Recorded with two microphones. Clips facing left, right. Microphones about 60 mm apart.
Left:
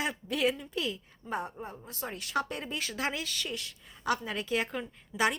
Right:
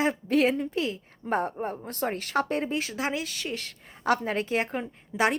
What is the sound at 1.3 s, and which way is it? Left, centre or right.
A woman's voice, right.